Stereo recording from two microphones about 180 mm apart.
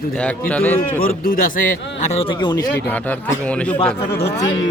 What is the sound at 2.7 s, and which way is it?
A man's voice, 10° left (ahead or behind).